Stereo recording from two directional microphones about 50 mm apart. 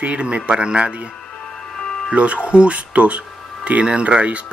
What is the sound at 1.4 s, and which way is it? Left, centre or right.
Music, centre.